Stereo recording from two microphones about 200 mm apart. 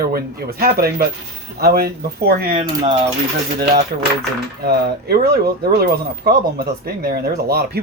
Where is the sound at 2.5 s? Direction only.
25° right (ahead or behind).